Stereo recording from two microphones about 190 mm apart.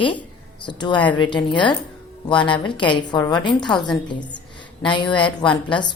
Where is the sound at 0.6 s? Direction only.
25° left (ahead or behind).